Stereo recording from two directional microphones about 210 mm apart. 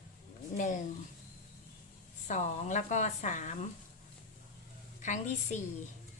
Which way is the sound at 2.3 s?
35° left (ahead or behind).